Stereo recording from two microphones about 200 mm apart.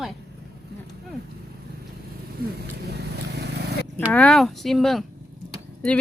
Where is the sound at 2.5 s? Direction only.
55° right (ahead or behind).